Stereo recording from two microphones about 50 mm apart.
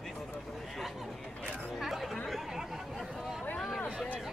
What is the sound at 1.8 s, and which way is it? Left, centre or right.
Chatter, centre.